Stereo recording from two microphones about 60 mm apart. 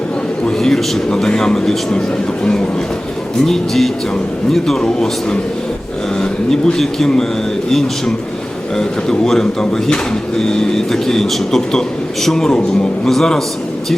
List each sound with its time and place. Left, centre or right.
0.6 s speech: centre
3.4 s music: centre
4.5 s speech: centre
6.5 s speech: centre
13.1 s music: centre